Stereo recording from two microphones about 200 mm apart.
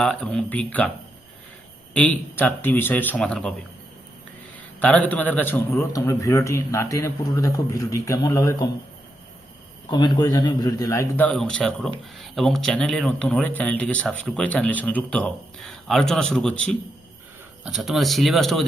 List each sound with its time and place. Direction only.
0.0 s speech: 5° left (ahead or behind)
1.9 s a man's voice: 5° left (ahead or behind)
4.8 s a man's voice: 5° left (ahead or behind)
9.9 s a man's voice: 20° left (ahead or behind); by 18.6 s centre (ahead or behind)